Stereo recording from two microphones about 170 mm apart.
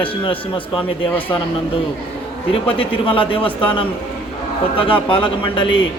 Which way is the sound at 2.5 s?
30° left (ahead or behind).